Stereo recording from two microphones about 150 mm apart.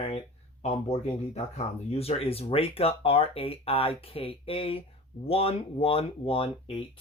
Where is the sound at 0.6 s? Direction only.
45° left (ahead or behind).